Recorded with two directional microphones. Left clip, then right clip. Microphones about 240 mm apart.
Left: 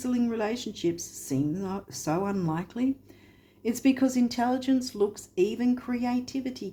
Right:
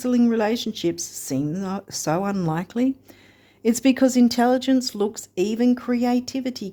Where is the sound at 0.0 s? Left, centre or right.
Right.